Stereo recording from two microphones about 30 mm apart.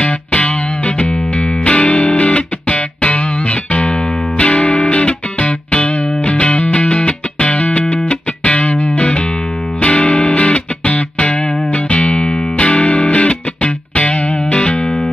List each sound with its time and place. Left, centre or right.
0.0 s music: left
4.4 s music: left